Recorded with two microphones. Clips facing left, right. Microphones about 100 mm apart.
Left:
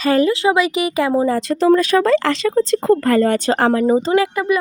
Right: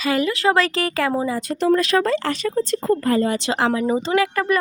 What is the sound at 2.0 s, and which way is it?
Speech, 90° left.